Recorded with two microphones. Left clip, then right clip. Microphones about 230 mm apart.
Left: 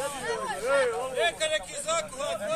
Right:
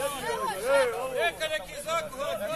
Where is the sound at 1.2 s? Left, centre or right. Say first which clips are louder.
Left 3 dB; left.